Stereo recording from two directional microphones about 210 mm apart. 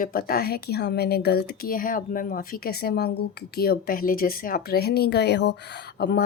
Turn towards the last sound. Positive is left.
turn(degrees=50)  # may be behind; listen again after turning